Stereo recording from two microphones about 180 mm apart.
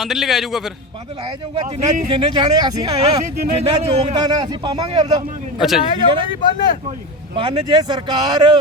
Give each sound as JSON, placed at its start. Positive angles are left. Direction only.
{"t": 0.0, "sound": "a man's voice", "side_deg": 0}
{"t": 1.6, "sound": "speech", "side_deg": -45}
{"t": 2.0, "sound": "a man's voice", "side_deg": -30}
{"t": 3.5, "sound": "a man's voice", "side_deg": -35}
{"t": 5.5, "sound": "a man's voice", "side_deg": 0}
{"t": 6.4, "sound": "speech", "side_deg": 25}
{"t": 7.3, "sound": "a man's voice", "side_deg": -25}